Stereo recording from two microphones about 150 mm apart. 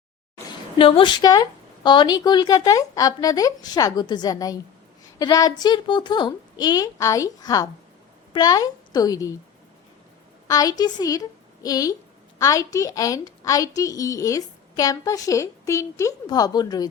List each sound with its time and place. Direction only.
0.8 s a woman's voice: 35° left (ahead or behind)
10.5 s a woman's voice: 25° left (ahead or behind)